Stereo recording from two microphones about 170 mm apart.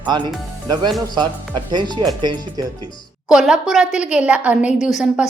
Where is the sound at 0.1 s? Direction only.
25° right (ahead or behind).